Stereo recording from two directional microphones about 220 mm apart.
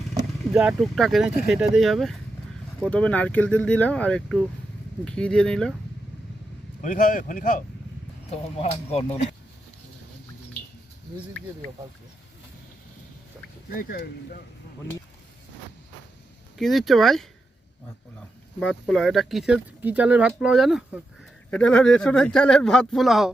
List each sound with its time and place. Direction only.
0.5 s speech: 5° right (ahead or behind)
6.8 s speech: 40° left (ahead or behind)
8.3 s speech: 30° left (ahead or behind)
13.7 s speech: 45° left (ahead or behind)
16.6 s speech: centre (ahead or behind)
18.6 s speech: centre (ahead or behind)